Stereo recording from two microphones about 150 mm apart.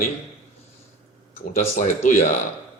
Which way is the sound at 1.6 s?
50° left (ahead or behind).